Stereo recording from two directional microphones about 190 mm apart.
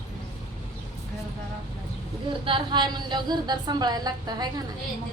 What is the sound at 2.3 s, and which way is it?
A woman's voice, 25° right (ahead or behind).